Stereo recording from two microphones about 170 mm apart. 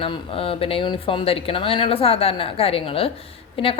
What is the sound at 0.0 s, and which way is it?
A woman's voice, 30° left (ahead or behind).